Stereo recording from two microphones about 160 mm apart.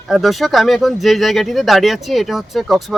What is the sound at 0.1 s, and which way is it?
Speech, centre (ahead or behind).